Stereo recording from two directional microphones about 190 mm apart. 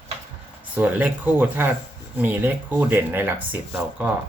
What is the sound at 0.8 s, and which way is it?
Speech, 10° right (ahead or behind).